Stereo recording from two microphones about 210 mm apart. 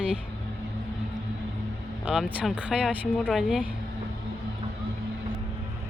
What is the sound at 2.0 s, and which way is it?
A woman's voice, 5° right (ahead or behind).